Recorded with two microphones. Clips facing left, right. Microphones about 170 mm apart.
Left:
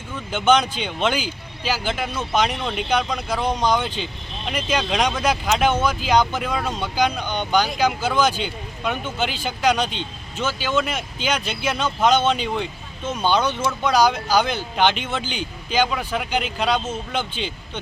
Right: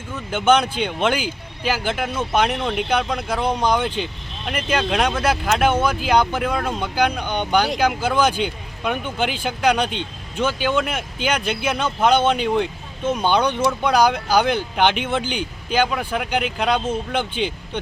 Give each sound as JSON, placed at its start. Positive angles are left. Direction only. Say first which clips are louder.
{"t": 0.3, "sound": "speech", "louder": "right 1 dB", "side_deg": -10}
{"t": 3.8, "sound": "speech", "louder": "right 4 dB", "side_deg": -55}
{"t": 4.4, "sound": "speech", "louder": "right 2 dB", "side_deg": -5}